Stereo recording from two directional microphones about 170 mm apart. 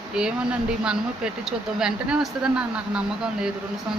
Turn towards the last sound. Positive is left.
turn(degrees=-5)  # may be behind; listen again after turning